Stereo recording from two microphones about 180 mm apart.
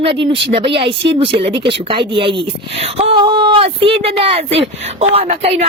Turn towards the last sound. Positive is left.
turn(degrees=-35)  # may be behind; listen again after turning